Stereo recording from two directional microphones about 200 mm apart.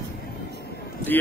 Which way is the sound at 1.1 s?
10° left (ahead or behind).